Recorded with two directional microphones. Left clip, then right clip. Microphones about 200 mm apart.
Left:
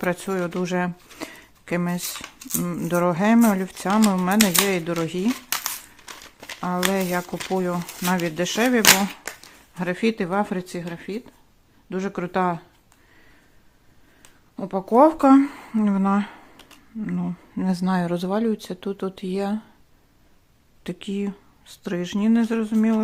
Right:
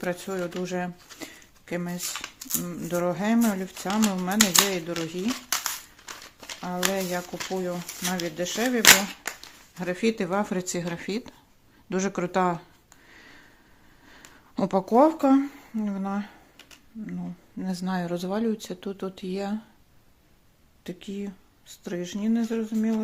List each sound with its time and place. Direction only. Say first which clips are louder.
0.0 s speech: left 5 dB; 35° left (ahead or behind)
5.3 s crumpling: left 2 dB; 20° left (ahead or behind)
6.9 s speech: left 4 dB; 35° left (ahead or behind)
9.7 s speech: left 3 dB; 25° left (ahead or behind); by 12.6 s centre (ahead or behind)
14.2 s a sound: right 5 dB; 20° right (ahead or behind)
15.0 s speech: left 5 dB; 25° left (ahead or behind)
20.8 s speech: left 7 dB; 30° left (ahead or behind)